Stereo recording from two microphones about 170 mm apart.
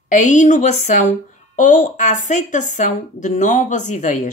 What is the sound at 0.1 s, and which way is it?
A woman's voice, 45° left (ahead or behind).